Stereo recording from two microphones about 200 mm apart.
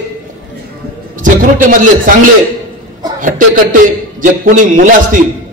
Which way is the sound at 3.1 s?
40° right (ahead or behind).